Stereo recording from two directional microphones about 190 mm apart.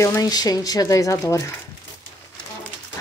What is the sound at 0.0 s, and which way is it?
Speech, 20° left (ahead or behind).